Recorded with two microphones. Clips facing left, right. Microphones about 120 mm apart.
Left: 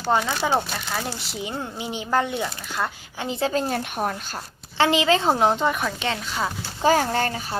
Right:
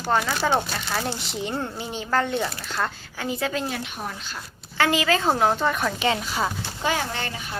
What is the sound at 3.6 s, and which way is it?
Speech, 45° left (ahead or behind).